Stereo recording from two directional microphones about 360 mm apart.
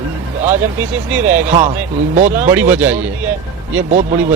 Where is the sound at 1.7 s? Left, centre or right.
Centre.